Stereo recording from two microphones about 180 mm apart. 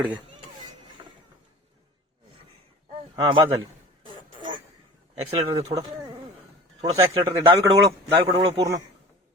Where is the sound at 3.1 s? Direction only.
25° right (ahead or behind).